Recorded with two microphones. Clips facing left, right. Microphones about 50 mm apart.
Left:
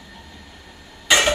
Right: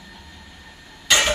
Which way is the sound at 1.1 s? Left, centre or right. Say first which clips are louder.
Left 2 dB; centre.